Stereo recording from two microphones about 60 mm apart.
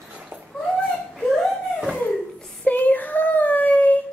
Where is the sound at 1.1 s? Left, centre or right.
Centre.